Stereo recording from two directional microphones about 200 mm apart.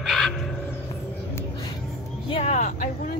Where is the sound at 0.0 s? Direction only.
Centre (ahead or behind).